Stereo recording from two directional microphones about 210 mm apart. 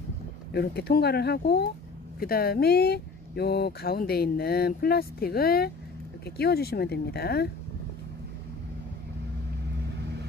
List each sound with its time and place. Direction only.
0.5 s speech: 50° left (ahead or behind)